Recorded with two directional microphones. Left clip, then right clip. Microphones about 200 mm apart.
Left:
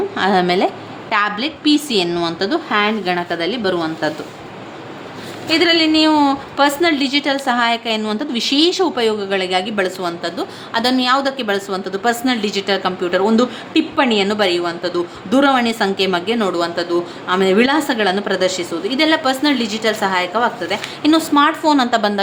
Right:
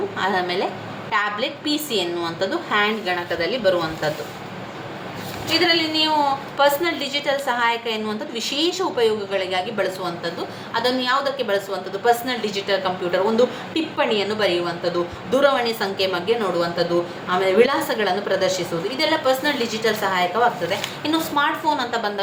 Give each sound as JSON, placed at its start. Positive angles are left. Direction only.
{"t": 0.2, "sound": "a woman's voice", "side_deg": 45}
{"t": 5.5, "sound": "a woman's voice", "side_deg": 55}